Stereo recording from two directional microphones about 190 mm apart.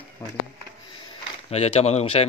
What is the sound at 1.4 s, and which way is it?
Speech, 30° left (ahead or behind).